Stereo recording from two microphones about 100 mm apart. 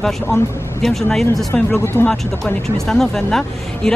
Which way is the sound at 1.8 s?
20° left (ahead or behind).